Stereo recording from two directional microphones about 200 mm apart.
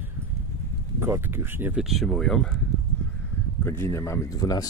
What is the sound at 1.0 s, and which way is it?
Speech, 10° right (ahead or behind).